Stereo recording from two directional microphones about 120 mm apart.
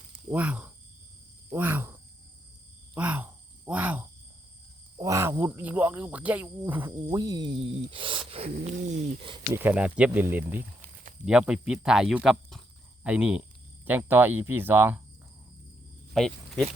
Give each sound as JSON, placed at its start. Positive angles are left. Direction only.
{"t": 0.3, "sound": "speech", "side_deg": -15}
{"t": 2.9, "sound": "a sound", "side_deg": -10}
{"t": 4.9, "sound": "speech", "side_deg": -25}
{"t": 5.5, "sound": "speech", "side_deg": -15}
{"t": 7.1, "sound": "speech", "side_deg": -30}
{"t": 8.5, "sound": "a sound", "side_deg": -85}
{"t": 9.5, "sound": "speech", "side_deg": -15}
{"t": 16.1, "sound": "speech", "side_deg": 5}